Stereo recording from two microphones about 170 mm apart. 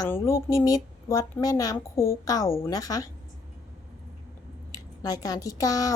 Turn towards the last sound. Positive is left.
turn(degrees=20)  # may be behind; listen again after turning